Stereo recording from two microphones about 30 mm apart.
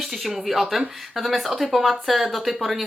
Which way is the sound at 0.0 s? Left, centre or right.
Centre.